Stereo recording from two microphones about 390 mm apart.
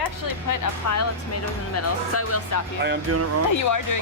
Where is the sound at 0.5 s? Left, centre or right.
Left.